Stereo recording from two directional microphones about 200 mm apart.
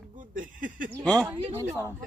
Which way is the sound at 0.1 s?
40° right (ahead or behind).